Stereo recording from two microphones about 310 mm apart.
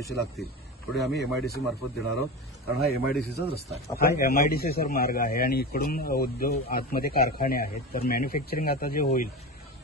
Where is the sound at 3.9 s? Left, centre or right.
Left.